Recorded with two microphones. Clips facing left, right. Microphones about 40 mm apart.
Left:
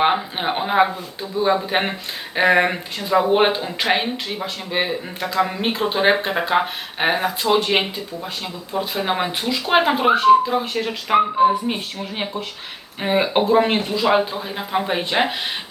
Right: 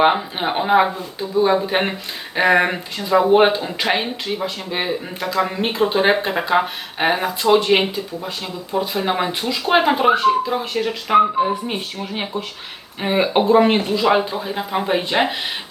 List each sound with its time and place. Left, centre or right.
0.0 s speech: centre
8.9 s speech: centre